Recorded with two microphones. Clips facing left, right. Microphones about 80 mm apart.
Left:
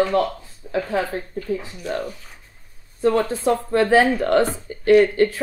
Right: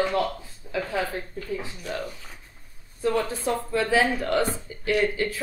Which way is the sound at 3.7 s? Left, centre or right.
Left.